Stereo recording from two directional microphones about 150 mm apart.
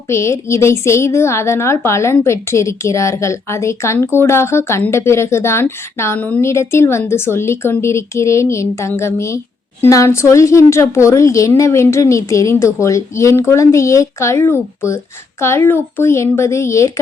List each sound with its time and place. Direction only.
0.1 s a woman's voice: 20° left (ahead or behind)